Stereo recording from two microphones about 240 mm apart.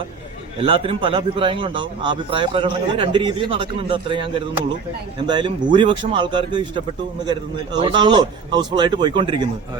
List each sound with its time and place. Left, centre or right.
0.6 s a man's voice: right